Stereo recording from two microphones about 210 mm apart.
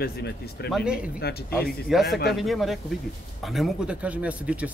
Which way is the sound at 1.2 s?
50° left (ahead or behind).